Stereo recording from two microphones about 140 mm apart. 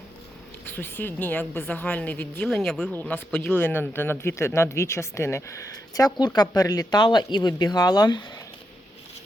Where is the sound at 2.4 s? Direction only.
Centre (ahead or behind).